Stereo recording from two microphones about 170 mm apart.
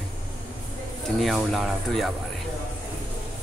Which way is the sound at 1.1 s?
Centre (ahead or behind).